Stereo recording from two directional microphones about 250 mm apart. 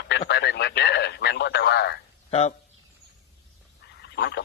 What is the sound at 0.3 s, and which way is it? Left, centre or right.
Radio, left.